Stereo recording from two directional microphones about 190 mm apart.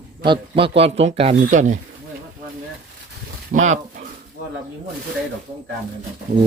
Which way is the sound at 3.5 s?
40° right (ahead or behind).